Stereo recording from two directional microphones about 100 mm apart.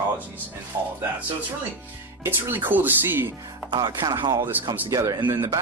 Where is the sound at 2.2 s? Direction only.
20° right (ahead or behind).